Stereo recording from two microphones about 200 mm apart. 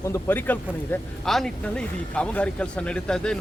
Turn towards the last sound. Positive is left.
turn(degrees=5)  # may be behind; listen again after turning